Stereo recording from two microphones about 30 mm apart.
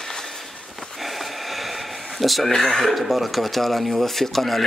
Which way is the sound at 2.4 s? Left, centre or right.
Centre.